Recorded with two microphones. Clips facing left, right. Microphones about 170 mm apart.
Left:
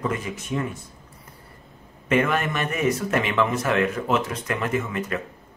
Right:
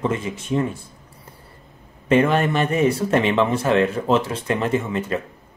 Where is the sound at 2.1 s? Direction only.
30° right (ahead or behind).